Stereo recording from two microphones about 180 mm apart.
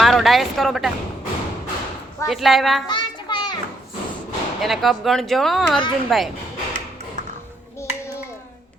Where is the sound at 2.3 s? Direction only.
Centre (ahead or behind).